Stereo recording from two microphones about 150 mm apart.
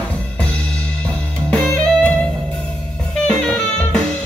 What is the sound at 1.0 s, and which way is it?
Music, 5° left (ahead or behind).